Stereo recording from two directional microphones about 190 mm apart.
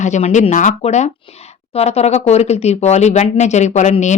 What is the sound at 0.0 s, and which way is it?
Speech, 40° left (ahead or behind).